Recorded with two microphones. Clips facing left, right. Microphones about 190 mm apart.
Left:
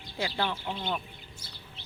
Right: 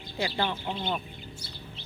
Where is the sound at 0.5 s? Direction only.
20° right (ahead or behind).